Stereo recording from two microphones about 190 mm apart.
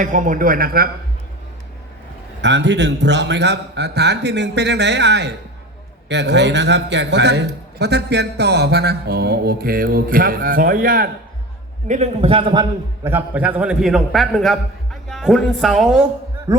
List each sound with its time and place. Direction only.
0.0 s a man's voice: 45° right (ahead or behind)
2.4 s a man's voice: 70° right (ahead or behind); by 11.1 s 50° right (ahead or behind)
11.9 s a man's voice: 35° right (ahead or behind)
13.1 s a man's voice: 10° right (ahead or behind)
16.5 s speech: 15° right (ahead or behind)